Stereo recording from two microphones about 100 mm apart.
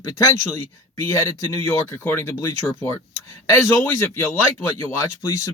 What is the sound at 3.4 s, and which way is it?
Speech, 25° left (ahead or behind).